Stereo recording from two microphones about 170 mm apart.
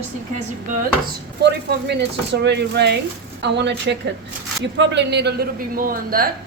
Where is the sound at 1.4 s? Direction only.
80° right; by 6.3 s 60° right (ahead or behind).